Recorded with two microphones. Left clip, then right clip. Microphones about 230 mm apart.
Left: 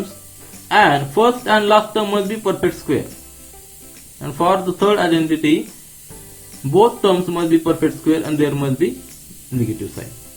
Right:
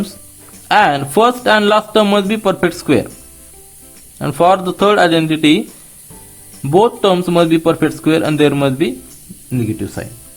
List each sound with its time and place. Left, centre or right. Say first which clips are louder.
0.7 s speech: right 2 dB; right
4.2 s speech: right 5 dB; right
6.7 s speech: right 2 dB; right